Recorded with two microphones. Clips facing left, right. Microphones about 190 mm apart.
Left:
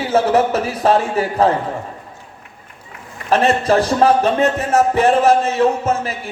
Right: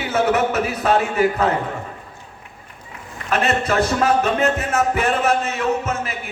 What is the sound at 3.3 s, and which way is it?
A man's voice, 30° left (ahead or behind).